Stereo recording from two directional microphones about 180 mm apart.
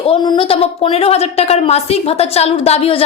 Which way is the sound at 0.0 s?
25° left (ahead or behind).